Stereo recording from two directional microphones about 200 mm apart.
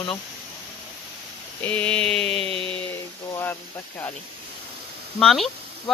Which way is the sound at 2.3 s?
30° right (ahead or behind).